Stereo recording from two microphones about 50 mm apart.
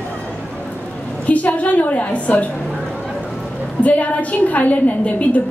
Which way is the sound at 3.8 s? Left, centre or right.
Left.